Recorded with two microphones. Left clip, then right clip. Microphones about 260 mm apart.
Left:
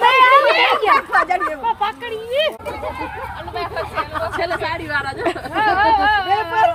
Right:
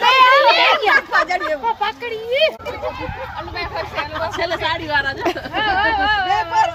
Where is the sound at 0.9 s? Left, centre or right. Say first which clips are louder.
Even; centre.